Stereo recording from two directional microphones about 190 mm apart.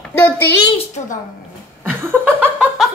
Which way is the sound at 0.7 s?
35° left (ahead or behind).